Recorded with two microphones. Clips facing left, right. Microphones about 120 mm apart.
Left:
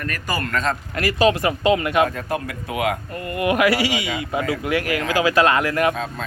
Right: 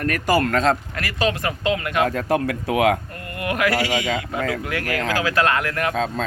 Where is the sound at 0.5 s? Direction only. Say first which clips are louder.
Right 4 dB; 90° right.